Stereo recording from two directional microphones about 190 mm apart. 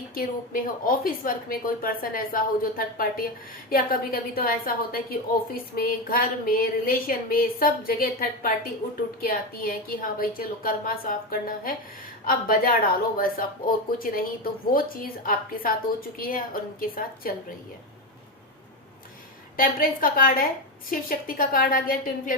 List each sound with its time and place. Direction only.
0.1 s a woman's voice: 50° left (ahead or behind)
19.5 s a woman's voice: 50° left (ahead or behind)